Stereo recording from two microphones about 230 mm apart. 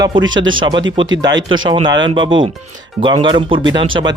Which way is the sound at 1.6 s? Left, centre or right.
Centre.